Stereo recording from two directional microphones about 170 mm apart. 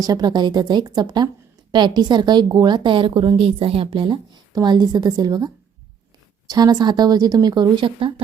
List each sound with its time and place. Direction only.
0.0 s a woman's voice: 25° right (ahead or behind)
6.5 s a woman's voice: 25° right (ahead or behind)